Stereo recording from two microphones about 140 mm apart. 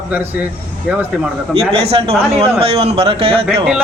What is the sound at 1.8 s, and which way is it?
A man's voice, 45° right (ahead or behind).